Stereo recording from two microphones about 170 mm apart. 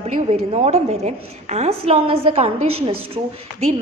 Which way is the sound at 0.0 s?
40° right (ahead or behind).